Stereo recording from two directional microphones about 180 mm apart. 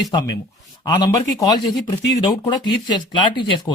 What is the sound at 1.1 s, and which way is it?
Speech, 20° left (ahead or behind).